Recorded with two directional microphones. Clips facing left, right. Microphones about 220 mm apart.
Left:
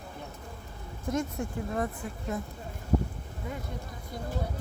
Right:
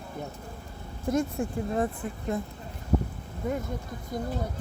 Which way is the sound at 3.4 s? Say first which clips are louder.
Right 9 dB; 50° right (ahead or behind).